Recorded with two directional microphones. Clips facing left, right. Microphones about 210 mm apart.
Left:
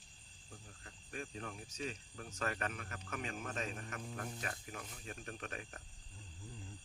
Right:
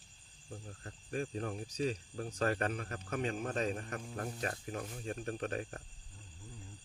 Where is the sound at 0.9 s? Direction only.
40° right (ahead or behind).